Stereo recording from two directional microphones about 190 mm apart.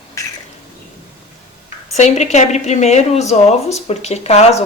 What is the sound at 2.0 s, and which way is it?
A woman's voice, 35° left (ahead or behind).